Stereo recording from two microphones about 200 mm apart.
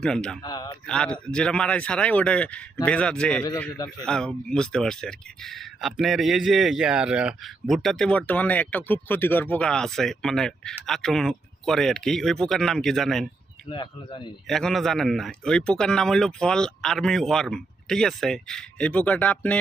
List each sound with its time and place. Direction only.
0.0 s speech: 5° left (ahead or behind)
0.4 s a man's voice: 20° left (ahead or behind)
0.9 s speech: 5° left (ahead or behind)
13.7 s speech: 25° left (ahead or behind)
14.4 s speech: centre (ahead or behind)